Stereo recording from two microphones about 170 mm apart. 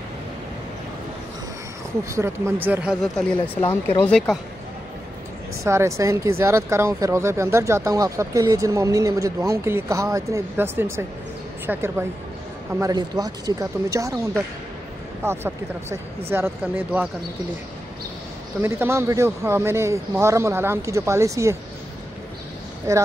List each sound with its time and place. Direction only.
2.0 s speech: 15° right (ahead or behind)
4.0 s speech: 5° left (ahead or behind)
5.6 s speech: 15° right (ahead or behind)
15.2 s speech: 15° right (ahead or behind)
18.6 s speech: 15° right (ahead or behind)
22.9 s speech: 20° right (ahead or behind)